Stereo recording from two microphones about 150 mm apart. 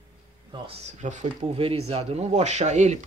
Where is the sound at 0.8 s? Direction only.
55° right (ahead or behind).